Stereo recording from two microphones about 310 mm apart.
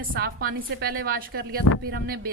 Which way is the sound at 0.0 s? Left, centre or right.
Right.